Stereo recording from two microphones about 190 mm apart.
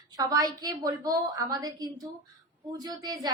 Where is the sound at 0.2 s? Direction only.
20° right (ahead or behind).